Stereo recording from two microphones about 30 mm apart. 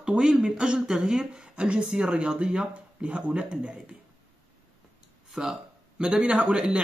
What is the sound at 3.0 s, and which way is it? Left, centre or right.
Speech, right.